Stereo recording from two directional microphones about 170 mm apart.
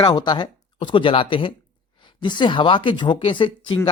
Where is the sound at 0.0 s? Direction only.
25° left (ahead or behind).